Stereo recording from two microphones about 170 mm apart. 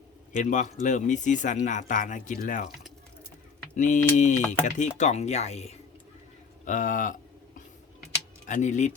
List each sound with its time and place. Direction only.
0.3 s speech: 45° left (ahead or behind)
3.8 s speech: 45° left (ahead or behind)
6.7 s a sound: 50° left (ahead or behind)
8.4 s speech: 45° left (ahead or behind)